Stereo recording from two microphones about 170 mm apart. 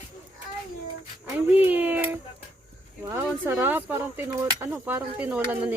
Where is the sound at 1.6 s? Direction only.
10° right (ahead or behind).